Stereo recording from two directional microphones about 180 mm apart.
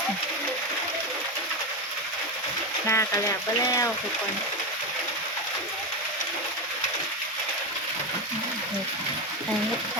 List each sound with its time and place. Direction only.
2.8 s speech: 15° left (ahead or behind)